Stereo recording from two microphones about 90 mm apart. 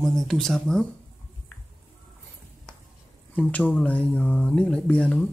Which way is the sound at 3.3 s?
15° left (ahead or behind).